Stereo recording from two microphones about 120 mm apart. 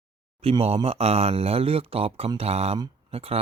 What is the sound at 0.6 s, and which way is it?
Speech, 55° right (ahead or behind).